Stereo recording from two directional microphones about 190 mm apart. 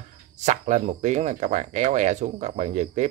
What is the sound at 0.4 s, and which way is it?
Speech, 40° right (ahead or behind).